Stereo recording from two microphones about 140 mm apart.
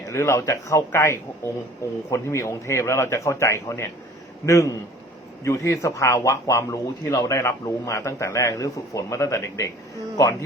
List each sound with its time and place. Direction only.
0.1 s speech: 20° left (ahead or behind)